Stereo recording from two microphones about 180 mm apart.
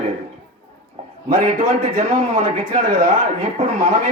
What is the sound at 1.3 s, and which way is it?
Speech, 50° right (ahead or behind).